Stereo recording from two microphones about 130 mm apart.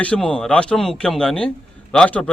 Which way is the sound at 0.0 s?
10° left (ahead or behind).